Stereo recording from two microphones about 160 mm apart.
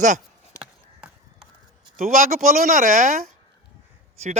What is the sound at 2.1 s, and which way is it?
Speech, 60° right (ahead or behind).